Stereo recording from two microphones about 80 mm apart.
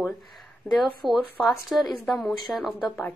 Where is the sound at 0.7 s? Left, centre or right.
Centre.